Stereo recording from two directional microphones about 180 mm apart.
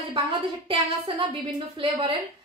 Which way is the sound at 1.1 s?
30° right (ahead or behind).